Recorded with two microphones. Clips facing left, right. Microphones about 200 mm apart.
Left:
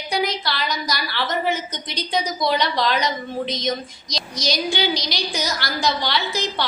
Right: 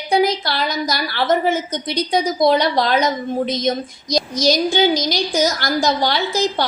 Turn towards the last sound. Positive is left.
turn(degrees=-45)  # may be behind; listen again after turning